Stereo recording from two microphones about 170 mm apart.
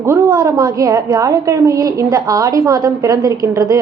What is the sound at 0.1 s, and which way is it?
A woman's voice, 20° right (ahead or behind).